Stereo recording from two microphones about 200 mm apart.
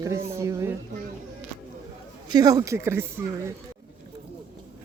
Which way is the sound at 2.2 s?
20° right (ahead or behind).